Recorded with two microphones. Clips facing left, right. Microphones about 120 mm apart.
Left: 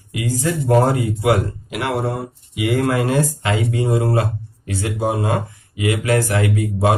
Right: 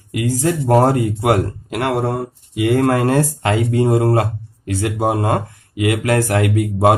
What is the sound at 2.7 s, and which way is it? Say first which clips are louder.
A man's voice: right 3 dB; 45° right (ahead or behind).